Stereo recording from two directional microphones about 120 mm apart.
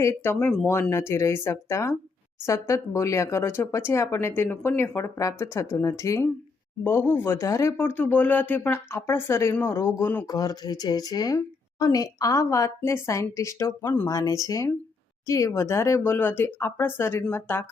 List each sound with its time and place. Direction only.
0.0 s speech: 20° left (ahead or behind)
10.2 s speech: 30° left (ahead or behind); by 17.7 s 15° left (ahead or behind)